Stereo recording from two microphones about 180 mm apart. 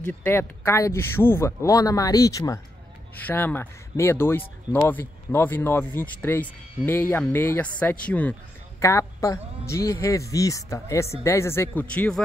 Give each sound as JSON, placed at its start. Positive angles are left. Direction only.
{"t": 0.0, "sound": "speech", "side_deg": 10}